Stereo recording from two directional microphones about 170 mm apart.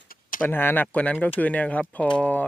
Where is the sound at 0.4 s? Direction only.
10° left (ahead or behind).